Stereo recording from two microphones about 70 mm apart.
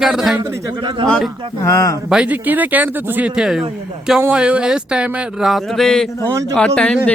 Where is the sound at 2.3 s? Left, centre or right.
Right.